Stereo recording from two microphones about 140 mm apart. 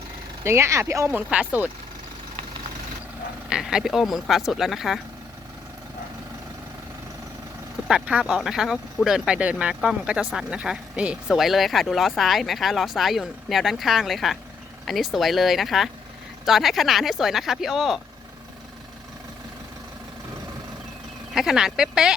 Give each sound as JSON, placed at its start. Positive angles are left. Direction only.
{"t": 0.4, "sound": "speech", "side_deg": -20}
{"t": 3.5, "sound": "speech", "side_deg": -5}
{"t": 7.9, "sound": "speech", "side_deg": -5}
{"t": 21.3, "sound": "speech", "side_deg": -5}